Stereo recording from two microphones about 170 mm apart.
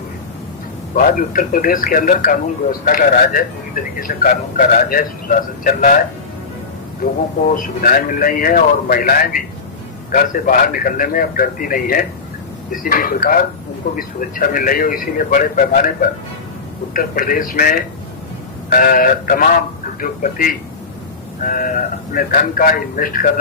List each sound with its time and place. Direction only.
0.9 s speech: 55° left (ahead or behind)
7.0 s a man's voice: 50° left (ahead or behind)